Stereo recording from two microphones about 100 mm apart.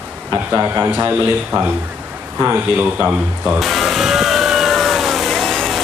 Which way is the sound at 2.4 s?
15° right (ahead or behind).